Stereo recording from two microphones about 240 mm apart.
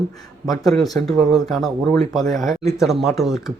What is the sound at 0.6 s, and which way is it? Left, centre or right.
A man's voice, centre.